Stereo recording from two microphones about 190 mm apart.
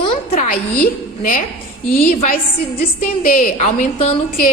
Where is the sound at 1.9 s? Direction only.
50° left (ahead or behind).